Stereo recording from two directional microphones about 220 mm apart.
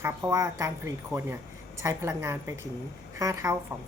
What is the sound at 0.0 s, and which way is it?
A woman's voice, 10° right (ahead or behind).